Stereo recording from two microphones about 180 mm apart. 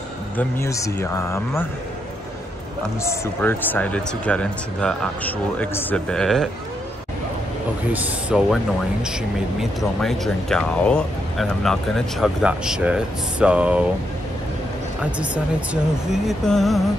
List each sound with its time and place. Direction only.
0.4 s speech: 15° left (ahead or behind)
3.0 s speech: 15° left (ahead or behind)
7.9 s speech: 10° right (ahead or behind)
9.6 s speech: centre (ahead or behind)
15.0 s speech: 5° right (ahead or behind)